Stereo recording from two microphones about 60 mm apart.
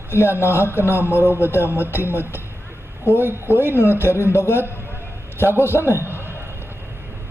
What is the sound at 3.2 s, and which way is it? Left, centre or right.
Speech, right.